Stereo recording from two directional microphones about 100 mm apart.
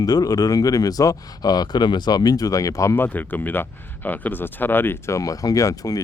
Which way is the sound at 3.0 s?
20° left (ahead or behind).